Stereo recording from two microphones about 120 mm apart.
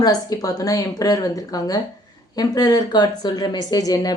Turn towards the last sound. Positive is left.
turn(degrees=30)  # may be behind; listen again after turning